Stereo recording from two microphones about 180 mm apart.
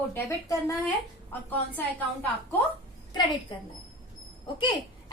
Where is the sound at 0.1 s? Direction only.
15° left (ahead or behind).